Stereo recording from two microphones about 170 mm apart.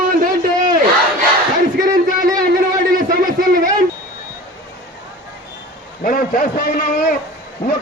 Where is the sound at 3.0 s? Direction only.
55° right (ahead or behind).